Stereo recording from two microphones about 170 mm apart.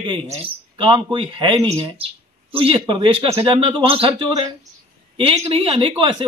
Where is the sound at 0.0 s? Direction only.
30° right (ahead or behind).